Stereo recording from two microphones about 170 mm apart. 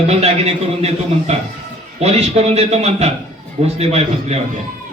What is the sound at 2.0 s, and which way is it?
Speech, 40° right (ahead or behind).